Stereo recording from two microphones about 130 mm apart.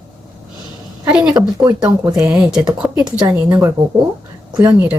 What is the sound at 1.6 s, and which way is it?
Speech, 30° right (ahead or behind).